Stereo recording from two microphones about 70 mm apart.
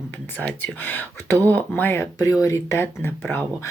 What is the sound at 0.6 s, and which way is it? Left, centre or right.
Speech, left.